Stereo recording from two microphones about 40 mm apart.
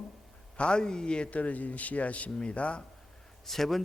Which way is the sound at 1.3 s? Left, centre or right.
Left.